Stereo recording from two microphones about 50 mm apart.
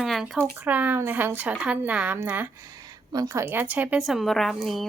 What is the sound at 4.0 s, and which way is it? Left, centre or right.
Speech, centre.